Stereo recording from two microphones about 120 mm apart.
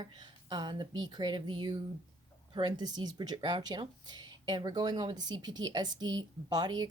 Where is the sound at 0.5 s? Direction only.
40° right (ahead or behind).